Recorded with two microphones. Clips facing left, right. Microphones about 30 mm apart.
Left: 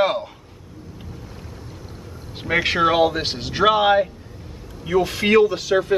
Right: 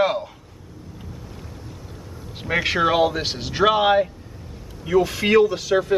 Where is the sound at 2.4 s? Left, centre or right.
Centre.